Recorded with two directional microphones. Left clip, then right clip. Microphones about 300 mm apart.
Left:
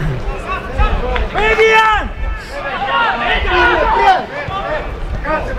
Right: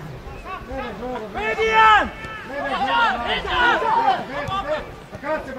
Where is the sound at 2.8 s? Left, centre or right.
Right.